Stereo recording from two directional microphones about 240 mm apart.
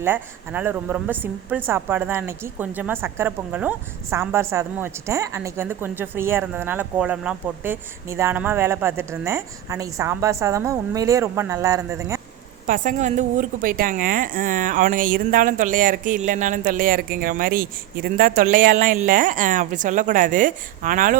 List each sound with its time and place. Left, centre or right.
0.0 s a woman's voice: centre
12.6 s a woman's voice: right